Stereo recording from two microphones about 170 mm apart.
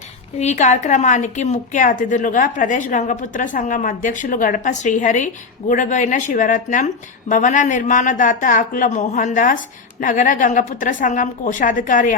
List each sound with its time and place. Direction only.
0.3 s a woman's voice: 45° left (ahead or behind)